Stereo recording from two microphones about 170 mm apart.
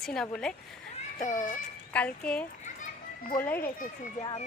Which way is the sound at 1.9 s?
5° left (ahead or behind).